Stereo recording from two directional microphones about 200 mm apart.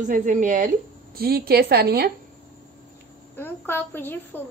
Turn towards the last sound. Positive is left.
turn(degrees=10)  # may be behind; listen again after turning